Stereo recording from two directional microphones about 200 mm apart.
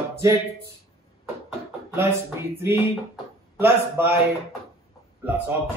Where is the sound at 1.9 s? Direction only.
10° right (ahead or behind).